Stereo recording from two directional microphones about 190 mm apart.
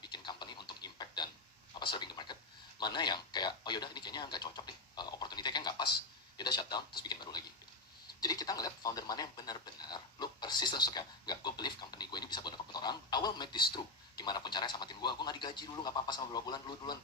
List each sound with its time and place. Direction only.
0.0 s a sound: 25° left (ahead or behind)
2.7 s radio: 25° left (ahead or behind)
6.3 s a man's voice: 20° left (ahead or behind)